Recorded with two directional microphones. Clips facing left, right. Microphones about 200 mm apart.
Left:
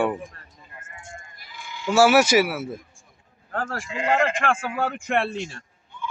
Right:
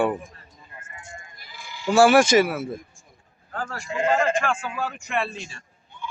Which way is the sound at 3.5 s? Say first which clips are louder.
Even; 55° left (ahead or behind).